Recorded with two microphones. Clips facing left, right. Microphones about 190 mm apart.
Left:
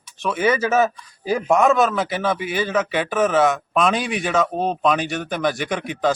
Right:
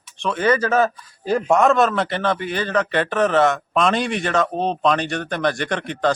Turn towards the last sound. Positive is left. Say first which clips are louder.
# even
turn(degrees=5)  # may be behind; listen again after turning